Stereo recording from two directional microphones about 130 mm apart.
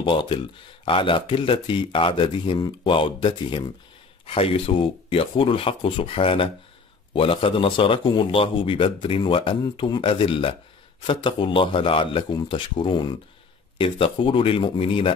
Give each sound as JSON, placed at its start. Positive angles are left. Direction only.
{"t": 0.0, "sound": "speech", "side_deg": 35}